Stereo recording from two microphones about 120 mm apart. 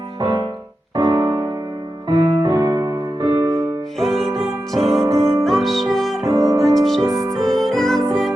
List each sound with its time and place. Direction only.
0.9 s music: 35° right (ahead or behind)
3.9 s music: centre (ahead or behind)
6.3 s music: 30° right (ahead or behind)
6.7 s music: centre (ahead or behind)
7.0 s music: 25° right (ahead or behind)
7.6 s music: 5° left (ahead or behind)